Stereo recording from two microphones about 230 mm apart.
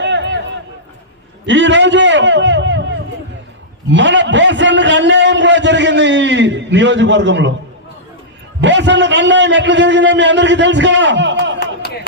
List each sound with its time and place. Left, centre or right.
0.0 s a sound: right
1.5 s a man's voice: right
3.8 s a man's voice: right
8.6 s a man's voice: right